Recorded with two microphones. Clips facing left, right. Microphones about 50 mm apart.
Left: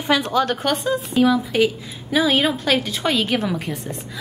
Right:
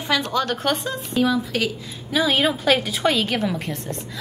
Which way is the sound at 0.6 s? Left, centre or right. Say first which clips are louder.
Left 3 dB; centre.